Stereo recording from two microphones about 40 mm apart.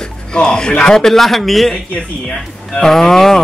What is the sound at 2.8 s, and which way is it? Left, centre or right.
Speech, centre.